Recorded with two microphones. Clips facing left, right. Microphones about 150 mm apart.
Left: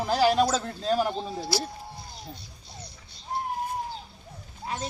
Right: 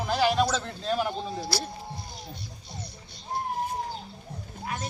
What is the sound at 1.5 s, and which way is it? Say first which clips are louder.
Speech: left 4 dB; 20° left (ahead or behind).